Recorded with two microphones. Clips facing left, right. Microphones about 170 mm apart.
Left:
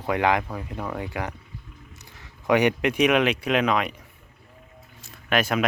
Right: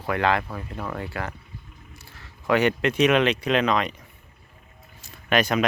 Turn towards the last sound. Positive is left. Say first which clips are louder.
# right 1 dB
turn(degrees=5)  # may be behind; listen again after turning